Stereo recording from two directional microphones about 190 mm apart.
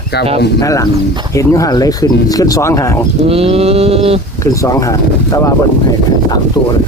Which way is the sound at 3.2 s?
30° right (ahead or behind).